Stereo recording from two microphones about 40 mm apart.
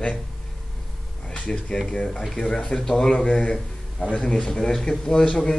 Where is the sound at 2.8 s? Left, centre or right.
Centre.